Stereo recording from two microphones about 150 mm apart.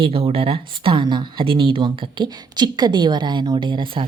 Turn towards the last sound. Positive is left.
turn(degrees=-35)  # may be behind; listen again after turning